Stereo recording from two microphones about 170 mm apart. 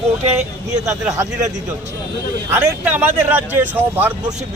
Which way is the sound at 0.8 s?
15° right (ahead or behind).